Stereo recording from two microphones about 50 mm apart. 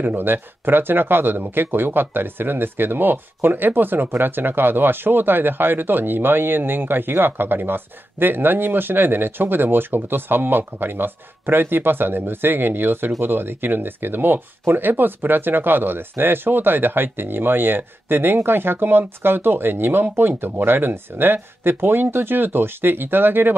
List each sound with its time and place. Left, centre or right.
0.0 s speech: right